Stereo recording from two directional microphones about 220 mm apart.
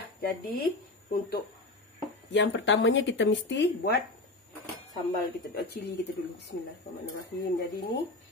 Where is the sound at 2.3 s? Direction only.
55° left (ahead or behind).